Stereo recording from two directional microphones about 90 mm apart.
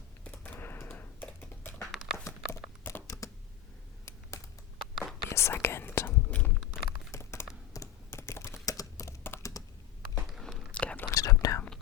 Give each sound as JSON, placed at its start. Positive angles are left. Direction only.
{"t": 0.3, "sound": "computer keyboard", "side_deg": 20}
{"t": 1.8, "sound": "a sound", "side_deg": -5}
{"t": 2.2, "sound": "a sound", "side_deg": 30}
{"t": 4.0, "sound": "computer keyboard", "side_deg": 35}
{"t": 4.8, "sound": "whispering", "side_deg": 0}
{"t": 5.3, "sound": "whispering", "side_deg": 30}
{"t": 6.3, "sound": "clip-clop", "side_deg": 15}
{"t": 7.1, "sound": "computer keyboard", "side_deg": 30}
{"t": 8.6, "sound": "typing", "side_deg": 40}
{"t": 9.2, "sound": "computer keyboard", "side_deg": 25}
{"t": 10.4, "sound": "whispering", "side_deg": 0}
{"t": 10.7, "sound": "whispering", "side_deg": 15}
{"t": 11.1, "sound": "whispering", "side_deg": 35}